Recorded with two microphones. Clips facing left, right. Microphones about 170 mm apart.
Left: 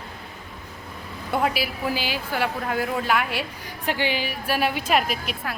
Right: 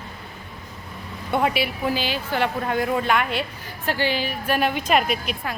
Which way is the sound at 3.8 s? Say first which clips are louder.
Right 1 dB; 15° left (ahead or behind).